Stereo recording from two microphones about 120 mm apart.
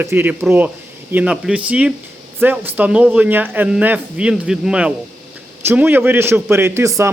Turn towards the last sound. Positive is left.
turn(degrees=-25)  # may be behind; listen again after turning